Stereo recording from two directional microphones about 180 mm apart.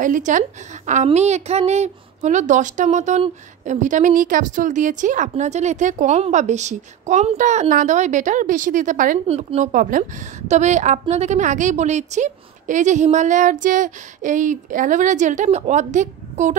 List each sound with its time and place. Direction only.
0.0 s a woman's voice: 45° right (ahead or behind)
9.3 s a woman's voice: 35° right (ahead or behind)